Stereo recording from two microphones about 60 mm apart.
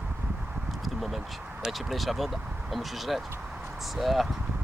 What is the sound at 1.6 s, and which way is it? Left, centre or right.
Speech, centre.